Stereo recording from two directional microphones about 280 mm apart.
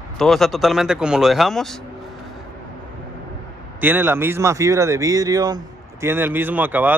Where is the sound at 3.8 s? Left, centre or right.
Centre.